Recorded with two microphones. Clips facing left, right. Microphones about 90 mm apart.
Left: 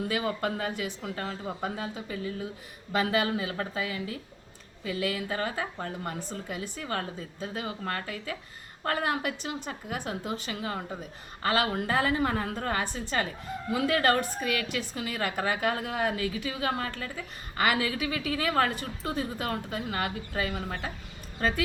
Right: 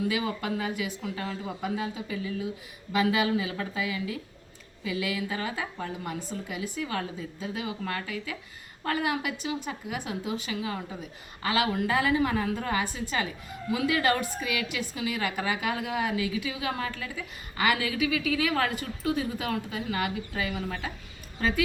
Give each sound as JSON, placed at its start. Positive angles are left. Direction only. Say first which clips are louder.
{"t": 0.1, "sound": "a woman's voice", "louder": "even", "side_deg": 40}